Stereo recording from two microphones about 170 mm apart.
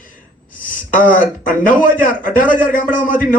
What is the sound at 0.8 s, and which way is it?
A man's voice, 50° left (ahead or behind).